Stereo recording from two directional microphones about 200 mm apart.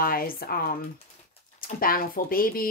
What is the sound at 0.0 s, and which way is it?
Speech, 45° left (ahead or behind).